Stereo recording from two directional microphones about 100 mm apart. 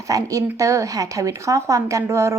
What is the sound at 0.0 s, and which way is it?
A woman's voice, 35° right (ahead or behind).